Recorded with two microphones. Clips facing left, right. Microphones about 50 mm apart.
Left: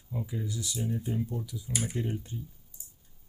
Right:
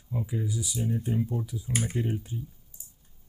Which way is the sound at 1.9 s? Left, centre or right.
Centre.